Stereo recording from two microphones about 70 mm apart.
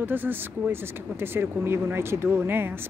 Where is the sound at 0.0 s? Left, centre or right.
Right.